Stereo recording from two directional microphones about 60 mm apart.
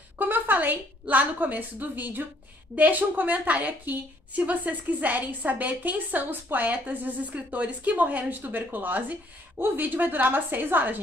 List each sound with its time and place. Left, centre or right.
0.2 s a woman's voice: right